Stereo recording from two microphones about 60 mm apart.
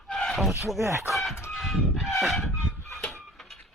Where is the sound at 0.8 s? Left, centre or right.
Right.